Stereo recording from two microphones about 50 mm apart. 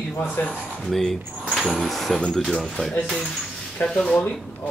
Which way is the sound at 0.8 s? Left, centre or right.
Centre.